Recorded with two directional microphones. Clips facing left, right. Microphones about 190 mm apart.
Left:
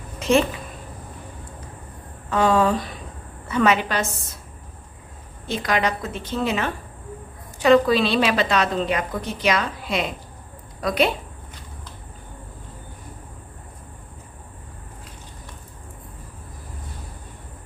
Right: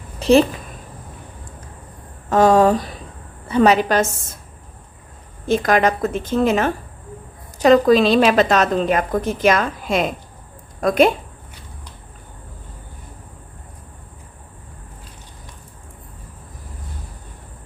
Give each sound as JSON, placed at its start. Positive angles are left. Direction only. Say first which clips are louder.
{"t": 0.2, "sound": "a sound", "louder": "right 6 dB", "side_deg": -35}
{"t": 2.3, "sound": "a woman's voice", "louder": "right 6 dB", "side_deg": -40}
{"t": 5.5, "sound": "a woman's voice", "louder": "right 7 dB", "side_deg": -50}